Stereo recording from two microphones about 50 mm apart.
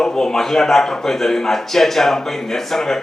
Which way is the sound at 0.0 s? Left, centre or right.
Centre.